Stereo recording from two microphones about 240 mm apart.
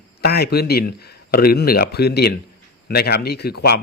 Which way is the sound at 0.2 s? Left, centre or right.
Left.